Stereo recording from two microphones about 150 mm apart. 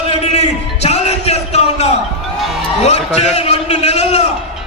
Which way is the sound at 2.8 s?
50° left (ahead or behind).